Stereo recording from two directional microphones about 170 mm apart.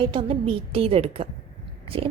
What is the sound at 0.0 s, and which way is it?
A woman's voice, 30° right (ahead or behind).